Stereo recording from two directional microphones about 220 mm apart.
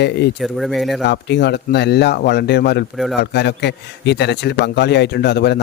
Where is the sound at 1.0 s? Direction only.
50° left (ahead or behind).